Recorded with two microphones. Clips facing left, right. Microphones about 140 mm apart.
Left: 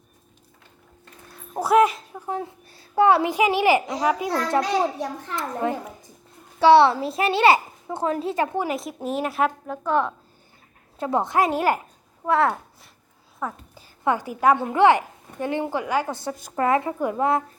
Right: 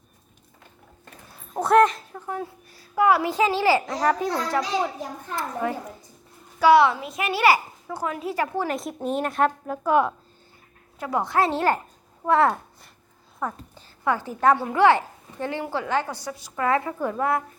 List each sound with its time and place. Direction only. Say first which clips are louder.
1.5 s a woman's voice: even; 5° left (ahead or behind)
2.2 s a child's voice: left 2 dB; 25° left (ahead or behind)
3.2 s a woman's voice: left 1 dB; 15° left (ahead or behind)
4.9 s a child's voice: left 3 dB; 80° left
6.6 s a child's voice: left 2 dB; 30° left (ahead or behind)
8.7 s a woman's voice: even; 5° left (ahead or behind)
9.8 s a woman's voice: right 2 dB; 10° right (ahead or behind)
11.0 s a woman's voice: left 2 dB; 25° left (ahead or behind)
12.2 s a woman's voice: right 1 dB; centre (ahead or behind)
14.0 s a woman's voice: left 1 dB; 15° left (ahead or behind)
16.3 s a woman's voice: left 3 dB; 45° left (ahead or behind)
16.6 s a child's voice: left 2 dB; 20° left (ahead or behind)